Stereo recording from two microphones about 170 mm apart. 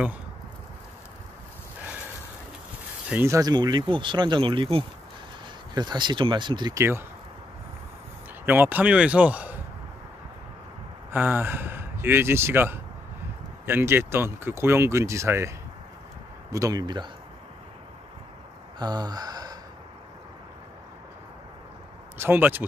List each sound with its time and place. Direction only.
3.1 s speech: 15° right (ahead or behind)
8.5 s speech: 10° right (ahead or behind)
11.1 s speech: 10° right (ahead or behind)
16.5 s speech: 20° right (ahead or behind)
18.8 s gasp: 25° right (ahead or behind)
22.2 s speech: 10° right (ahead or behind)